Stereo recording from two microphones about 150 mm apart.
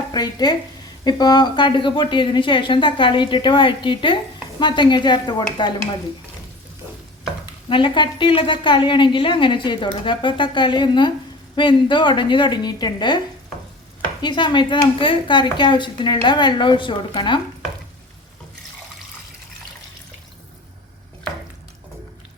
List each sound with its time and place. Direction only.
0.1 s a woman's voice: 30° left (ahead or behind)
7.7 s a woman's voice: 30° left (ahead or behind)